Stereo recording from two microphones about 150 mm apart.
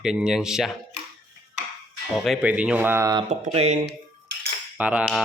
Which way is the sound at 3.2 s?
50° right (ahead or behind).